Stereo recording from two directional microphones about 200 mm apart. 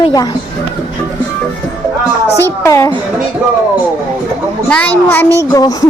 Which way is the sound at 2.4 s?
15° left (ahead or behind).